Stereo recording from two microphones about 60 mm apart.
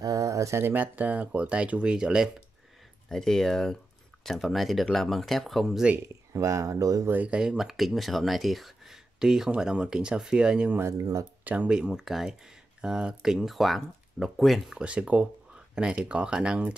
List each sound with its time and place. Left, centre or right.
0.0 s a sound: right
0.6 s speech: right; by 2.3 s centre
3.1 s speech: centre
6.0 s speech: right
7.2 s speech: centre
11.0 s speech: right
11.4 s speech: right; by 14.8 s centre
14.8 s speech: right